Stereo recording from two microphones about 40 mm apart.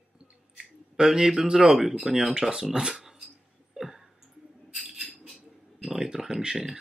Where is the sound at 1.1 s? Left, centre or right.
Centre.